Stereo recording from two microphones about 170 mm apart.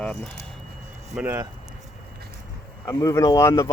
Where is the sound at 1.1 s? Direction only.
10° right (ahead or behind).